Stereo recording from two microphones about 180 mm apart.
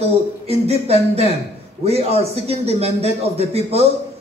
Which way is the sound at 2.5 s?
35° right (ahead or behind).